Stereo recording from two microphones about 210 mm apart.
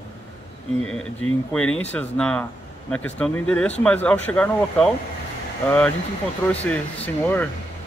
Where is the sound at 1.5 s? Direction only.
5° left (ahead or behind).